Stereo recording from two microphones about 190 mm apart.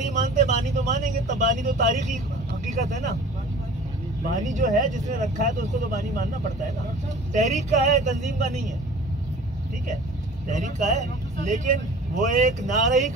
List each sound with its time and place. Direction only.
0.1 s vehicle: 40° right (ahead or behind)
1.4 s speech: 40° right (ahead or behind)
4.3 s speech: 40° right (ahead or behind)
7.3 s speech: 40° right (ahead or behind)
10.5 s speech: 40° right (ahead or behind)